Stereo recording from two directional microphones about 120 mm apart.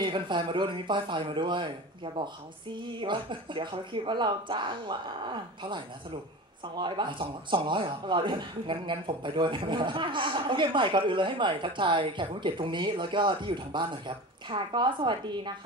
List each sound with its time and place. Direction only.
0.0 s speech: 40° right (ahead or behind)